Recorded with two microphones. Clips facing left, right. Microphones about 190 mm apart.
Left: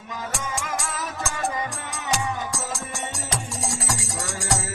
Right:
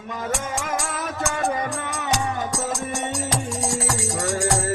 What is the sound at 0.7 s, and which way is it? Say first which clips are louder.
Music: right 3 dB; 55° right (ahead or behind).